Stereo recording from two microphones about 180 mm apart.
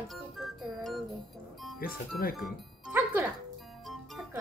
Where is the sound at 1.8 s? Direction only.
55° left (ahead or behind).